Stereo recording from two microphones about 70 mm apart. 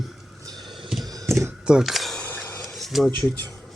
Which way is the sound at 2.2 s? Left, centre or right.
Left.